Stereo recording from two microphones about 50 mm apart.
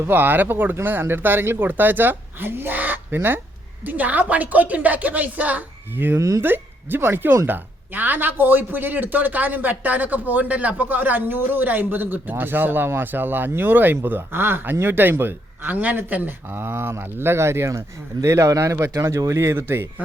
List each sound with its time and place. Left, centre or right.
0.0 s a man's voice: right
3.8 s a man's voice: right
6.1 s speech: right
6.4 s a man's voice: right
16.6 s speech: right
19.6 s speech: right